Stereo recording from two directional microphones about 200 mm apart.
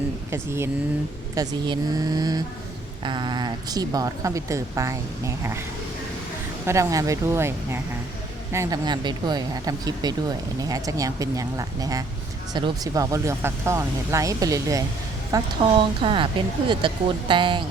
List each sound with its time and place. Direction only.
0.3 s speech: 15° right (ahead or behind)
6.7 s speech: 15° right (ahead or behind)